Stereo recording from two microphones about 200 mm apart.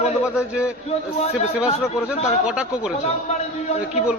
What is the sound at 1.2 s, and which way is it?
Speech, 30° left (ahead or behind).